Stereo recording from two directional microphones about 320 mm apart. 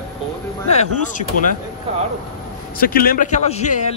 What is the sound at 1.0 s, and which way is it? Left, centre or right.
Speech, left.